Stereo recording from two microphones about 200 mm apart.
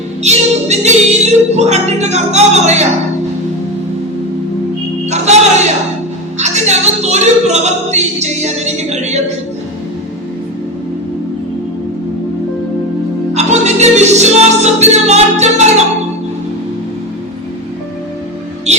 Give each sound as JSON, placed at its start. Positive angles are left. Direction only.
{"t": 0.2, "sound": "speech", "side_deg": -35}
{"t": 5.0, "sound": "music", "side_deg": -35}
{"t": 6.4, "sound": "speech", "side_deg": -35}
{"t": 13.3, "sound": "music", "side_deg": -35}